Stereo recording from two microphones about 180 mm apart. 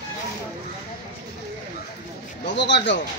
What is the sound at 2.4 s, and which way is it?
Speech, 75° left (ahead or behind).